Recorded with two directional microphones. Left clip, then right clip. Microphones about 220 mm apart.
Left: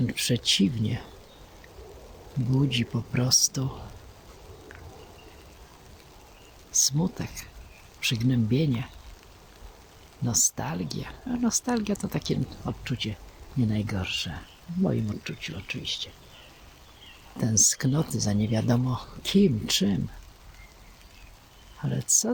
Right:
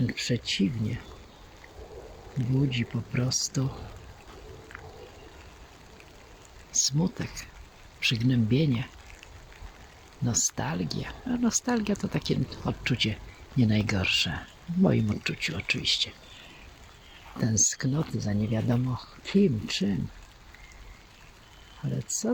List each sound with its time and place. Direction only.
0.1 s speech: 10° left (ahead or behind)
2.6 s speech: 15° left (ahead or behind)
6.7 s speech: centre (ahead or behind)
10.2 s speech: centre (ahead or behind)
12.8 s speech: 10° right (ahead or behind)
17.3 s speech: 5° left (ahead or behind)
21.8 s speech: 10° left (ahead or behind)